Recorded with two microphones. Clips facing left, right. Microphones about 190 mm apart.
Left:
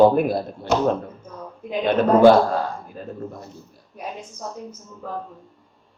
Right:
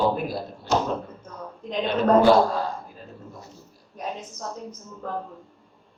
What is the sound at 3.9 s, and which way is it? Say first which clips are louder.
Speech: even; 10° left (ahead or behind).